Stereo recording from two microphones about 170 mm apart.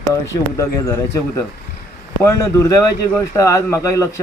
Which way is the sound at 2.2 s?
15° left (ahead or behind).